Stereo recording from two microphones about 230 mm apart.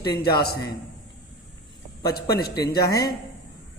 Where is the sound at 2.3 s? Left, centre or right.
Left.